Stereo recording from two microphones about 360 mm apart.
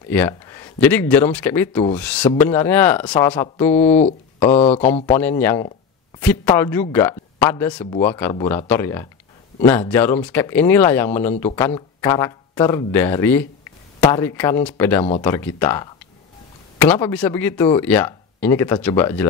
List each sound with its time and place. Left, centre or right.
0.1 s speech: centre
4.4 s speech: centre
5.2 s speech: centre